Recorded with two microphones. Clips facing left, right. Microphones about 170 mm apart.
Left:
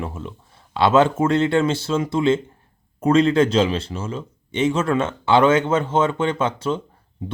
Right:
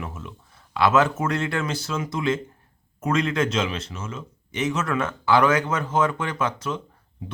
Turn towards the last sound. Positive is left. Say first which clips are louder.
# left 5 dB
turn(degrees=30)  # may be behind; listen again after turning